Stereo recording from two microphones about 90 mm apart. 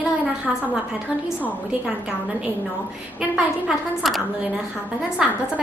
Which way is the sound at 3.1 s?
5° right (ahead or behind).